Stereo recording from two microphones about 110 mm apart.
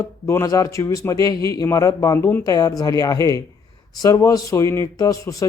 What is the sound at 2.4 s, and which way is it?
Speech, 35° left (ahead or behind).